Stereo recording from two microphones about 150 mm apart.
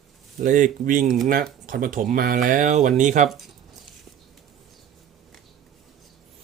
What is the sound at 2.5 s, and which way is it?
Speech, 60° right (ahead or behind).